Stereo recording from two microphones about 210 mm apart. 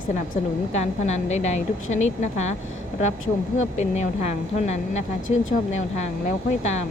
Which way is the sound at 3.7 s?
35° left (ahead or behind).